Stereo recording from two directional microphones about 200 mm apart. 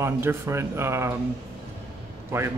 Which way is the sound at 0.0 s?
15° right (ahead or behind).